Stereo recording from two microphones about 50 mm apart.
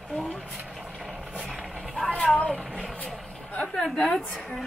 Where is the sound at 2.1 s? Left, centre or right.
Centre.